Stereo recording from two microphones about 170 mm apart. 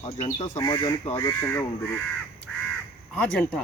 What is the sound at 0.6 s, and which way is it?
Speech, 25° left (ahead or behind).